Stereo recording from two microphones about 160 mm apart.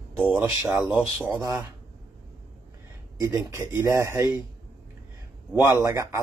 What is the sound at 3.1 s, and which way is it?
Speech, 20° right (ahead or behind).